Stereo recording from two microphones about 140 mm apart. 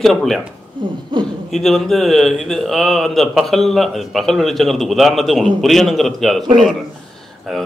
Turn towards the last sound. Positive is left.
turn(degrees=0)  # may be behind; listen again after turning